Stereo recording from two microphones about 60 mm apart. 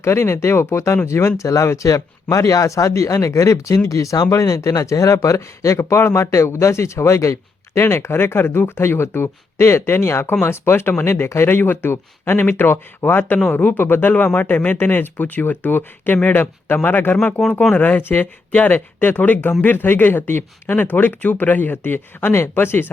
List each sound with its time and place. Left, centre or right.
0.0 s speech: left
1.4 s speech: left
18.0 s speech: left
18.5 s speech: left
18.9 s speech: left